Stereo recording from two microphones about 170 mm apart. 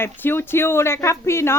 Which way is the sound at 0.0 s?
10° left (ahead or behind).